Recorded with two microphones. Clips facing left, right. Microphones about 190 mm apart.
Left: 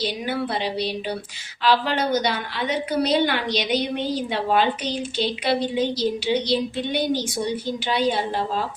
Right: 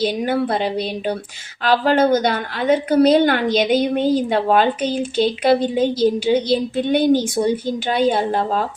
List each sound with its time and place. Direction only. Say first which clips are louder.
0.0 s a woman's voice: right 7 dB; 50° right (ahead or behind)